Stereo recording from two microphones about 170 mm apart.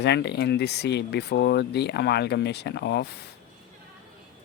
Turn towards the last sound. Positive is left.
turn(degrees=80)